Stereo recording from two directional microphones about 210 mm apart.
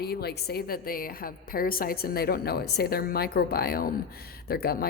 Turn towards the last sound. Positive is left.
turn(degrees=45)  # may be behind; listen again after turning